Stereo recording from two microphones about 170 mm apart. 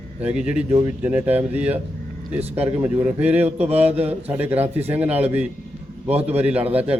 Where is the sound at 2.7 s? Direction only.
10° right (ahead or behind).